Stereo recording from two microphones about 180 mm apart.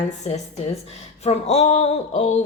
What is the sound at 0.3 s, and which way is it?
Speech, 35° left (ahead or behind).